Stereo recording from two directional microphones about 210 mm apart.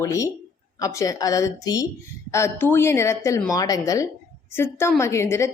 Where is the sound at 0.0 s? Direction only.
15° left (ahead or behind).